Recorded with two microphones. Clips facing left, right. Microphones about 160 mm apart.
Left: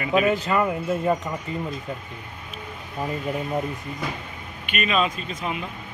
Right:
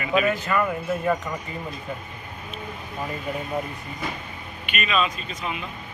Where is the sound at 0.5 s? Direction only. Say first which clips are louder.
Left 1 dB; 20° left (ahead or behind).